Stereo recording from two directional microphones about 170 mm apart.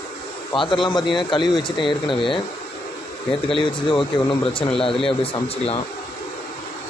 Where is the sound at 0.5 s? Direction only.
30° left (ahead or behind).